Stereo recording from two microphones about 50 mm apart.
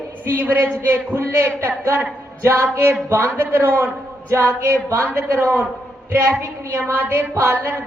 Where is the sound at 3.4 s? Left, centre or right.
Right.